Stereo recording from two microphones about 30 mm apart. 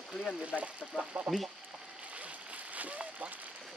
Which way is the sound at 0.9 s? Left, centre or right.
Left.